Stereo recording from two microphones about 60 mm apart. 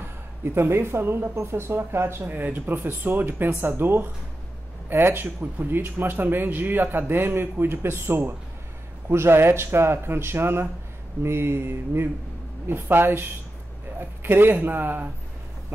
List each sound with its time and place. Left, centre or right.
0.4 s speech: right
2.2 s speech: right